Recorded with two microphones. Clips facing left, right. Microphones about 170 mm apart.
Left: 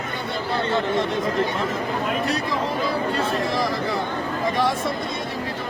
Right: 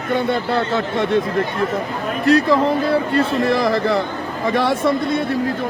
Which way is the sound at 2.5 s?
60° right (ahead or behind).